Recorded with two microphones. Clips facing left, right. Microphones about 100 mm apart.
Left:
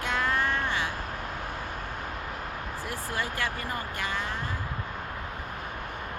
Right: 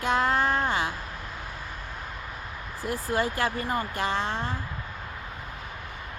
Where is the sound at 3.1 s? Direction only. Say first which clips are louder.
Right 6 dB; 30° right (ahead or behind).